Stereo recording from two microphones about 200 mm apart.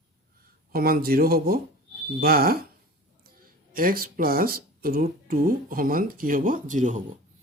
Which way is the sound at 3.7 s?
45° right (ahead or behind).